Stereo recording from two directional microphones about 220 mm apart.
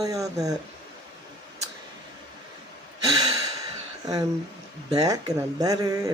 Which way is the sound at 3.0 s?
15° right (ahead or behind).